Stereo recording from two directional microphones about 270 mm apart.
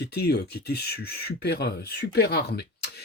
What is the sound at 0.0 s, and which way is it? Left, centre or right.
Speech, left.